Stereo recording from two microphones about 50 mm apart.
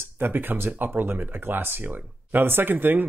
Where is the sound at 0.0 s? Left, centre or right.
Right.